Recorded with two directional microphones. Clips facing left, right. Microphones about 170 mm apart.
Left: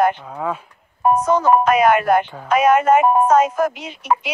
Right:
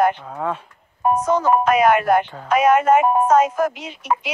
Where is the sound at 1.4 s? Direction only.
75° left (ahead or behind).